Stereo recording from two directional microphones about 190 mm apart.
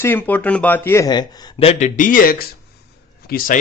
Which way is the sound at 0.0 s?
10° left (ahead or behind).